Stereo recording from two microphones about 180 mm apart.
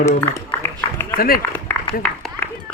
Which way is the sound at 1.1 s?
55° left (ahead or behind).